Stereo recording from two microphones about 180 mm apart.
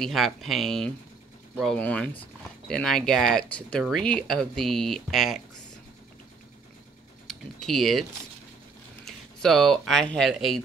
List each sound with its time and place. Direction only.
0.0 s speech: centre (ahead or behind)
7.2 s speech: centre (ahead or behind)
9.0 s speech: centre (ahead or behind)